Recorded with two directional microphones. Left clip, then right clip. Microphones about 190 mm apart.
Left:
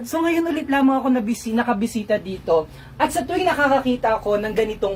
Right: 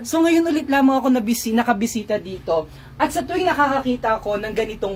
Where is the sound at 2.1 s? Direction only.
25° right (ahead or behind).